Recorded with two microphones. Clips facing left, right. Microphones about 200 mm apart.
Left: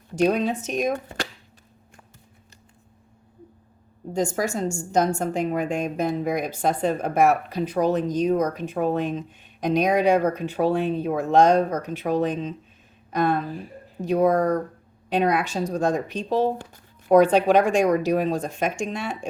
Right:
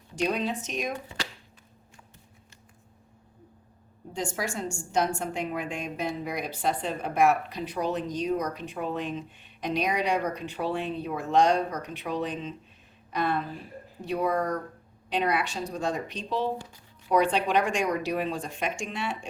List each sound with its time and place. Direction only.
0.2 s a woman's voice: 45° left (ahead or behind)
4.1 s a woman's voice: 40° left (ahead or behind)